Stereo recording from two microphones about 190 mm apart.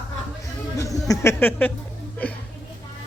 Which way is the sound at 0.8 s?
20° left (ahead or behind).